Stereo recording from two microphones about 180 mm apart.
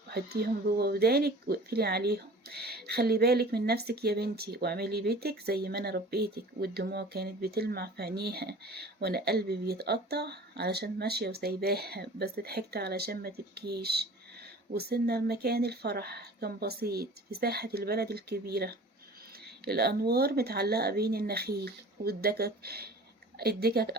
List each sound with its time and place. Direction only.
0.1 s speech: 60° right (ahead or behind)